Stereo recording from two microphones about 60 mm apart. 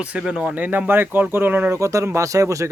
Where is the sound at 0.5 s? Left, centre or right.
Right.